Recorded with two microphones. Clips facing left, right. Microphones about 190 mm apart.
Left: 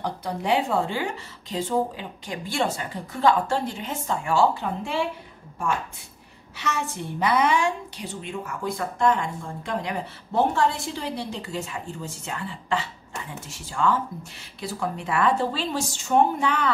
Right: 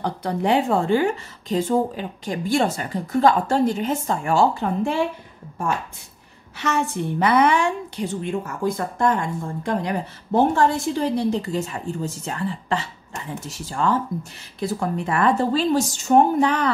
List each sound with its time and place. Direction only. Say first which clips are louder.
0.0 s a woman's voice: right 5 dB; 55° right (ahead or behind)
6.6 s a woman's voice: right 6 dB; 55° right (ahead or behind)